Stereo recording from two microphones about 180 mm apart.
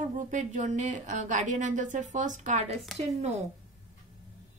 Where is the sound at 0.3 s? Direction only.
45° right (ahead or behind).